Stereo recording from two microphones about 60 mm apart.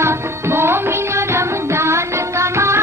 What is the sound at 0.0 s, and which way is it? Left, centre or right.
Music, right.